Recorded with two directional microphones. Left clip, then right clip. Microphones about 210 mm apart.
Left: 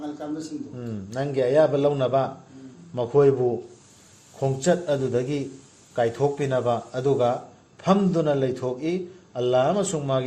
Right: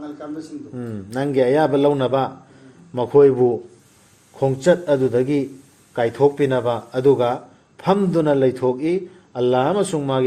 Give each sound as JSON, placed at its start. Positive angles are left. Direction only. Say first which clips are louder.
{"t": 0.8, "sound": "a man's voice", "louder": "right 6 dB", "side_deg": -45}
{"t": 4.4, "sound": "a man's voice", "louder": "right 6 dB", "side_deg": -40}